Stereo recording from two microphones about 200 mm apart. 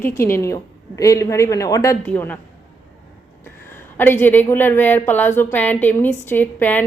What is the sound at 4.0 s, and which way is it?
Speech, 10° left (ahead or behind).